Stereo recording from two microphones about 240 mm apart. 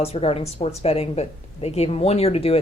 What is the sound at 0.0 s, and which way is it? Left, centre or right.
Speech, left.